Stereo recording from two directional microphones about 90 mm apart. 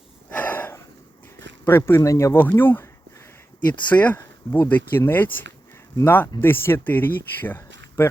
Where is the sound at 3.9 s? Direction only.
20° left (ahead or behind).